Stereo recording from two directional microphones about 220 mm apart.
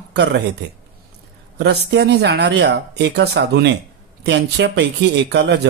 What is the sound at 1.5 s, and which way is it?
Speech, 50° right (ahead or behind).